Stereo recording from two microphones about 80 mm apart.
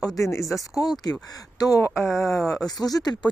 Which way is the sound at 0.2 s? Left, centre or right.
Left.